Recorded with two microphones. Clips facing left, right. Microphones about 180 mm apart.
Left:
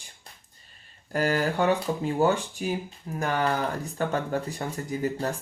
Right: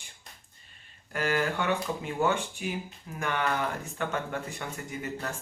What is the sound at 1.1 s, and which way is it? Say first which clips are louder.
Speech: left 4 dB; 35° left (ahead or behind).